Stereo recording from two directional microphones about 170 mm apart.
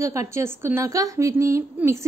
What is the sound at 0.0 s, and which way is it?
A woman's voice, 20° right (ahead or behind).